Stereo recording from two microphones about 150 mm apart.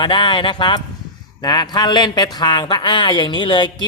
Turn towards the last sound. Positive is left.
turn(degrees=30)  # may be behind; listen again after turning